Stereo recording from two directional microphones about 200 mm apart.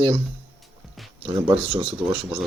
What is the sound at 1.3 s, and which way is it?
Speech, 25° right (ahead or behind).